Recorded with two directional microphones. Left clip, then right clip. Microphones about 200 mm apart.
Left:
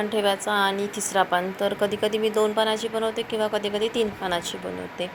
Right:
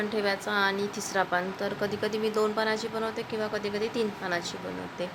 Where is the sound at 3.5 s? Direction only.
20° right (ahead or behind).